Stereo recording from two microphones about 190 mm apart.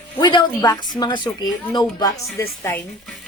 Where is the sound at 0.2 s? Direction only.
20° left (ahead or behind).